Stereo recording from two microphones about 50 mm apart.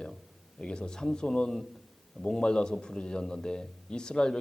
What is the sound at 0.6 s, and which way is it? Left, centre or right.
Speech, centre.